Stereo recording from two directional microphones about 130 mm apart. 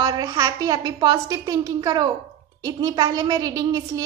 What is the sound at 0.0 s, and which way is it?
A woman's voice, 30° right (ahead or behind).